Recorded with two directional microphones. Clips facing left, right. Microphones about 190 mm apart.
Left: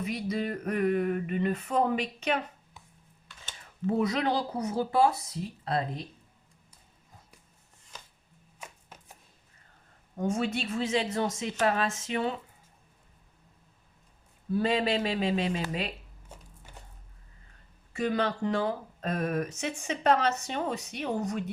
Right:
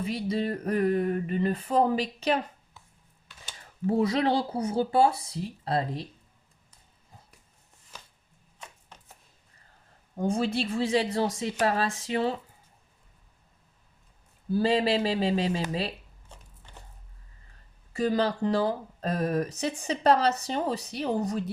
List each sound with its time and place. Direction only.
0.0 s speech: 30° right (ahead or behind)
3.8 s speech: 30° right (ahead or behind)
8.9 s chopping: 5° left (ahead or behind)
10.2 s speech: 30° right (ahead or behind)
14.5 s speech: 30° right (ahead or behind)
16.3 s a sound: 10° left (ahead or behind)
17.9 s speech: 35° right (ahead or behind)